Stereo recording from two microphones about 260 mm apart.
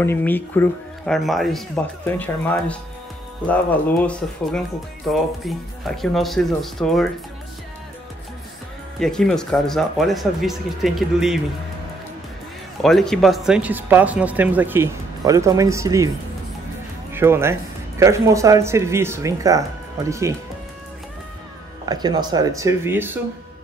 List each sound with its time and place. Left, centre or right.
0.0 s speech: centre
4.0 s speech: centre
9.0 s speech: centre
12.8 s speech: centre
17.1 s speech: centre
21.8 s speech: centre